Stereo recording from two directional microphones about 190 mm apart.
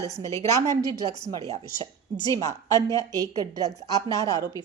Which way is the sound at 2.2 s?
15° left (ahead or behind).